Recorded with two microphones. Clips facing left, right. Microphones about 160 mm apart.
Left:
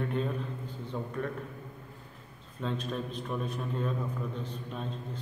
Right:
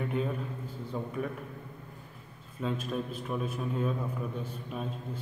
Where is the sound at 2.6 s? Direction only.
5° right (ahead or behind).